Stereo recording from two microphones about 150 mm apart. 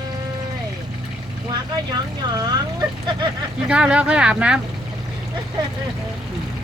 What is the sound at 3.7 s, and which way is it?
Speech, 5° right (ahead or behind).